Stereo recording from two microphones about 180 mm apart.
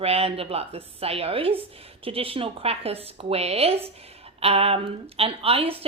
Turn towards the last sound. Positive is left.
turn(degrees=-30)  # may be behind; listen again after turning